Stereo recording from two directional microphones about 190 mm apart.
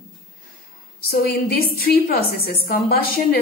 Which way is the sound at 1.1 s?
50° left (ahead or behind).